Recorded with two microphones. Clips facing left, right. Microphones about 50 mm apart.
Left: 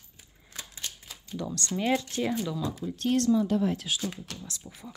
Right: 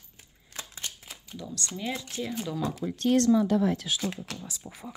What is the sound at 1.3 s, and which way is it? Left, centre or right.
Speech, left.